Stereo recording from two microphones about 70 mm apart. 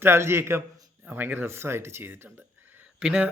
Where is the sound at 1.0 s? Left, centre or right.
Right.